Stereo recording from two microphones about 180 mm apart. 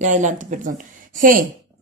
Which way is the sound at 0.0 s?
40° right (ahead or behind).